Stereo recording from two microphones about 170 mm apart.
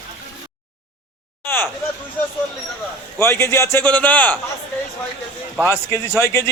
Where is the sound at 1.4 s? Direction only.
10° left (ahead or behind).